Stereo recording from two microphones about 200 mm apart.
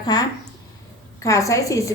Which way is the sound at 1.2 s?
15° left (ahead or behind).